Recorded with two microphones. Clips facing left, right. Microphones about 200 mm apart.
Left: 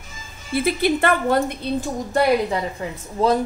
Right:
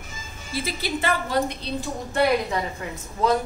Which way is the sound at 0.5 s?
60° left (ahead or behind).